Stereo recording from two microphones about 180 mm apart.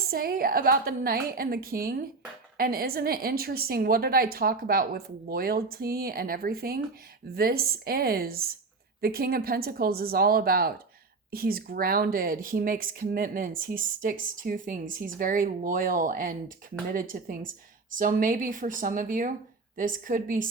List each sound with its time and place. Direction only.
0.0 s a woman's voice: 55° right (ahead or behind)